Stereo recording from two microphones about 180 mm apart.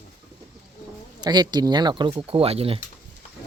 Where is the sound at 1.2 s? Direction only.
25° right (ahead or behind).